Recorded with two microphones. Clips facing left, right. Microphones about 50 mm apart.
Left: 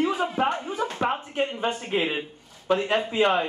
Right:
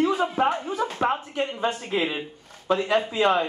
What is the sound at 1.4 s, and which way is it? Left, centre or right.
Speech, centre.